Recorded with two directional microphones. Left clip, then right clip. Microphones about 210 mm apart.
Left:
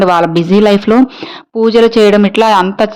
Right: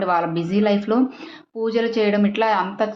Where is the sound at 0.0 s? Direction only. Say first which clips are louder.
Left 11 dB; 55° left (ahead or behind).